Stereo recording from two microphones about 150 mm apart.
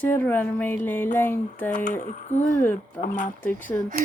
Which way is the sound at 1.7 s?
55° left (ahead or behind).